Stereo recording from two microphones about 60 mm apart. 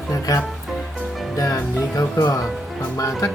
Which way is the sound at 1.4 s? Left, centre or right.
Left.